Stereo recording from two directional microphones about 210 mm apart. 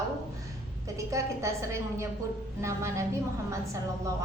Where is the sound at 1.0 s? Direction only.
15° right (ahead or behind).